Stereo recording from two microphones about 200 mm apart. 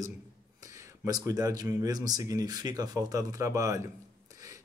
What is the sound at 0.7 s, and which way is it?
Speech, 15° right (ahead or behind).